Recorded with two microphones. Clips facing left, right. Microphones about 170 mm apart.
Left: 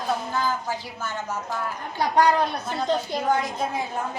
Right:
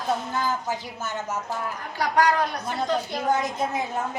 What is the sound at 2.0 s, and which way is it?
Speech, 25° left (ahead or behind).